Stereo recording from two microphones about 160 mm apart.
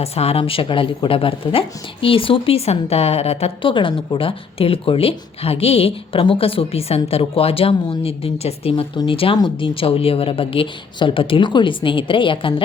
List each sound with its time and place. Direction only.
0.0 s a woman's voice: 40° left (ahead or behind)